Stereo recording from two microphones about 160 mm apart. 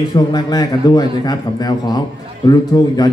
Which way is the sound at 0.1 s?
25° left (ahead or behind).